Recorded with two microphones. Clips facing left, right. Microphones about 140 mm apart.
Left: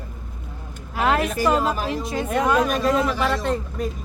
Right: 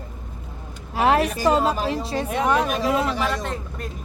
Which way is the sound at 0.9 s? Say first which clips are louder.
Right 2 dB; 30° right (ahead or behind).